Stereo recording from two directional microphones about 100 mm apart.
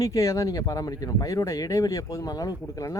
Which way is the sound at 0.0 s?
35° left (ahead or behind).